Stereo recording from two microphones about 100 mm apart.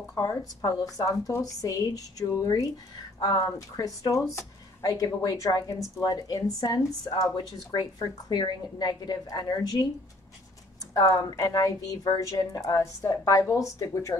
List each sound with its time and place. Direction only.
0.1 s speech: 35° left (ahead or behind)
10.9 s speech: 35° left (ahead or behind)